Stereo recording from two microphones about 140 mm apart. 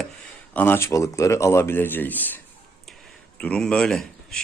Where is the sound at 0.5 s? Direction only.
15° left (ahead or behind).